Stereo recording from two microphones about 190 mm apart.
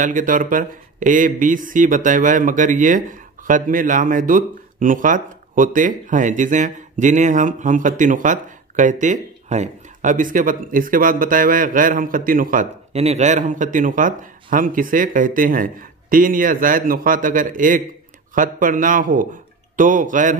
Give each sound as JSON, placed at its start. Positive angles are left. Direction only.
{"t": 0.0, "sound": "speech", "side_deg": -45}